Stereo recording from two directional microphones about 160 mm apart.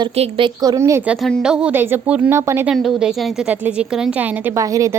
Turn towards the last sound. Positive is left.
turn(degrees=-20)  # may be behind; listen again after turning